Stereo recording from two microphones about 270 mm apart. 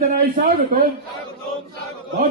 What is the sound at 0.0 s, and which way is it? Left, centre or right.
Speech, right.